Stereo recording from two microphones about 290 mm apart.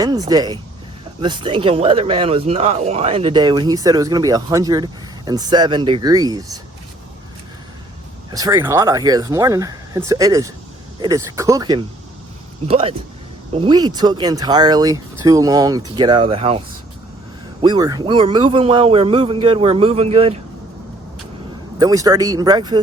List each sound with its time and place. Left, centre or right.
0.0 s speech: centre
8.3 s a man's voice: centre
17.6 s a man's voice: centre
21.8 s speech: centre